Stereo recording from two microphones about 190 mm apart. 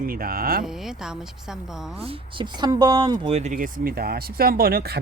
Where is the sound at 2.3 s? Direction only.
20° right (ahead or behind).